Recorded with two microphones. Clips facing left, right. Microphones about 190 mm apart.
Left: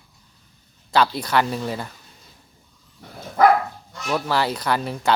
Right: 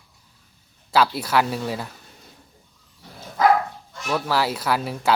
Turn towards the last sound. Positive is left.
turn(degrees=-5)  # may be behind; listen again after turning